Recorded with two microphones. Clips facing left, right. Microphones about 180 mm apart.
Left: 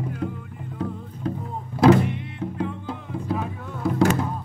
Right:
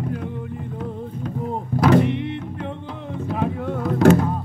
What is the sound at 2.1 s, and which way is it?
Music, 25° right (ahead or behind).